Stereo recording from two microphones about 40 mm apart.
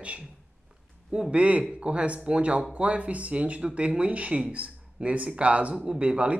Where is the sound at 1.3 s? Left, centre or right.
Right.